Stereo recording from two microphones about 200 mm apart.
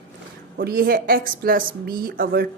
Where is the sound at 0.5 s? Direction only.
50° right (ahead or behind).